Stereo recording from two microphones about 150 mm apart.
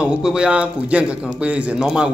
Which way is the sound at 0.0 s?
5° right (ahead or behind).